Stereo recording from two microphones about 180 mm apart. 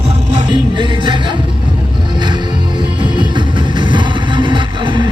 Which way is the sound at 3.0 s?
25° right (ahead or behind).